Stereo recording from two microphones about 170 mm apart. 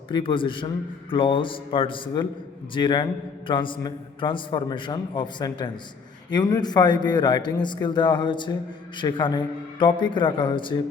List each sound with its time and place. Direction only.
0.1 s a man's voice: 30° left (ahead or behind)